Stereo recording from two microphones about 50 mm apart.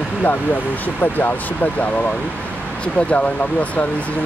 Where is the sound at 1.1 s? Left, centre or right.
Left.